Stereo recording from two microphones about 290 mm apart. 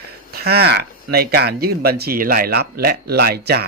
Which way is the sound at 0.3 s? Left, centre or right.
Right.